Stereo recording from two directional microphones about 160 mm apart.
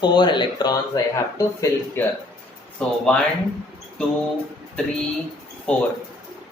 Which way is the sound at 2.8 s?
5° left (ahead or behind).